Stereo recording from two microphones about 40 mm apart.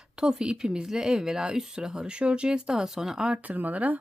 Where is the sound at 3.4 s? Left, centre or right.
Right.